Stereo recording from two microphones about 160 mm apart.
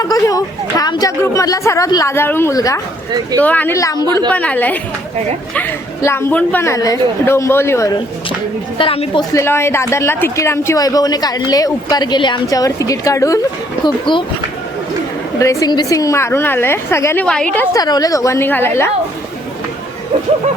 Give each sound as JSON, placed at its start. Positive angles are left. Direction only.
{"t": 0.0, "sound": "a woman's voice", "side_deg": 20}
{"t": 4.3, "sound": "a woman's voice", "side_deg": 10}
{"t": 8.8, "sound": "speech", "side_deg": 35}
{"t": 9.3, "sound": "speech", "side_deg": 15}
{"t": 13.8, "sound": "speech", "side_deg": 30}
{"t": 15.4, "sound": "a woman's voice", "side_deg": 20}
{"t": 17.2, "sound": "a woman's voice", "side_deg": 5}
{"t": 17.7, "sound": "a woman's voice", "side_deg": 25}